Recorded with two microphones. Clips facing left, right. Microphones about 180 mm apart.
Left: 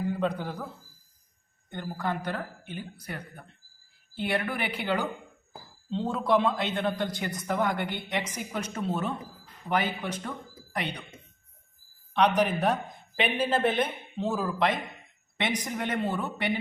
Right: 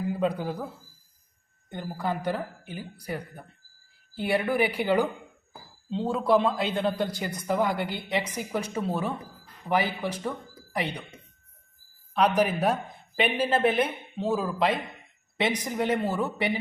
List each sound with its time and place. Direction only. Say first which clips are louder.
0.1 s a man's voice: right 2 dB; 5° right (ahead or behind)
1.7 s a woman's voice: right 1 dB; 10° right (ahead or behind)
12.4 s a man's voice: right 1 dB; 5° right (ahead or behind)